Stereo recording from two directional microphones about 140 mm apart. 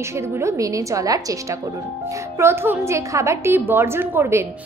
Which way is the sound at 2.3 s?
20° right (ahead or behind).